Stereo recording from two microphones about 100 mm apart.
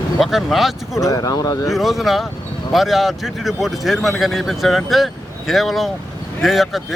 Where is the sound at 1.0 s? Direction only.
35° left (ahead or behind).